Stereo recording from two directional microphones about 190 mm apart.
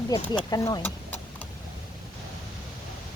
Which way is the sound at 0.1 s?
20° left (ahead or behind).